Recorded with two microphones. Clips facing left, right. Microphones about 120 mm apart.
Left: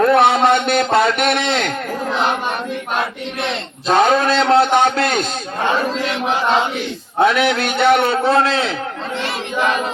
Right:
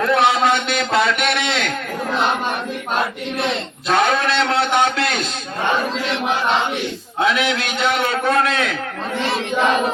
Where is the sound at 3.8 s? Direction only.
35° left (ahead or behind).